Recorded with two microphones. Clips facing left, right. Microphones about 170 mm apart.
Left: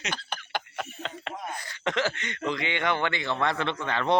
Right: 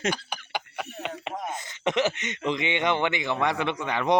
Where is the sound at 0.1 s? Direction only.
10° right (ahead or behind).